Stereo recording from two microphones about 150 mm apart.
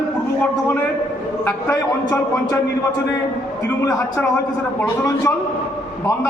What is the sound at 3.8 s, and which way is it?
A man's voice, 20° left (ahead or behind).